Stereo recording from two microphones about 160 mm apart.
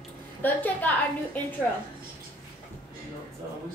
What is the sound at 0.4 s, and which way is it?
A woman's voice, 10° left (ahead or behind).